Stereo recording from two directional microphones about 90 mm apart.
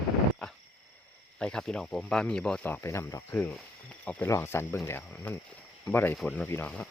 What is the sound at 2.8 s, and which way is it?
Speech, 35° left (ahead or behind).